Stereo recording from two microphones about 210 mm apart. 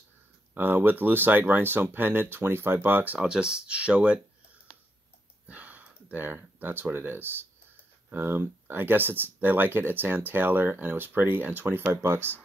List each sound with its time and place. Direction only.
0.6 s speech: 10° right (ahead or behind)
5.5 s speech: 5° right (ahead or behind)